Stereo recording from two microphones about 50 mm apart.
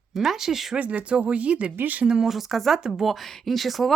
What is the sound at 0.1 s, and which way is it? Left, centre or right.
Speech, centre.